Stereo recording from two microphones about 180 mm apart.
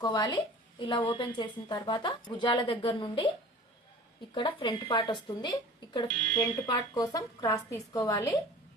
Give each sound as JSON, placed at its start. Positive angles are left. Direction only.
{"t": 0.0, "sound": "a woman's voice", "side_deg": 20}
{"t": 4.4, "sound": "a woman's voice", "side_deg": 25}